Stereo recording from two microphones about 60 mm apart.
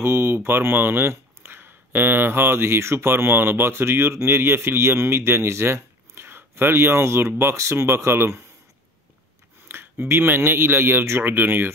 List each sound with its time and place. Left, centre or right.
0.0 s speech: right
9.7 s speech: right